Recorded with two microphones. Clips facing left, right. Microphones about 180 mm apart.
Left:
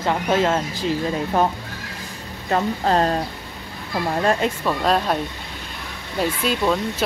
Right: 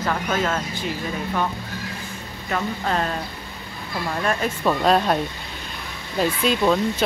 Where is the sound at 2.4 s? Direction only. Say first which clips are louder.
Left 5 dB; 35° left (ahead or behind).